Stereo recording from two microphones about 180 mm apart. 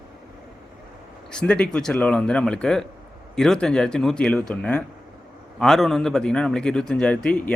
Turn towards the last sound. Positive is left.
turn(degrees=5)  # may be behind; listen again after turning